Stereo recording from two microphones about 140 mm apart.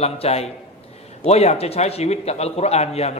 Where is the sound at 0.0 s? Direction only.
45° left (ahead or behind).